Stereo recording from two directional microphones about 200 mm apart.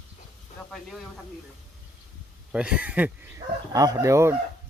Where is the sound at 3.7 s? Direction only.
20° right (ahead or behind).